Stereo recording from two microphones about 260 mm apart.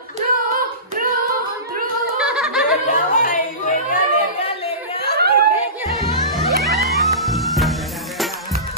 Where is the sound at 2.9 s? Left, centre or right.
Left.